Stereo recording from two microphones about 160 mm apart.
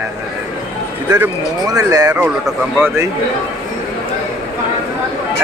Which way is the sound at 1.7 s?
20° right (ahead or behind).